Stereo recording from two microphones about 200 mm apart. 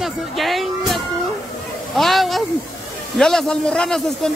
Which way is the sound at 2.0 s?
Centre (ahead or behind).